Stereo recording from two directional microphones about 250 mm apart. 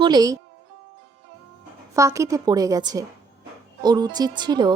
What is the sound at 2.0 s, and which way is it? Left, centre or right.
A woman's voice, centre.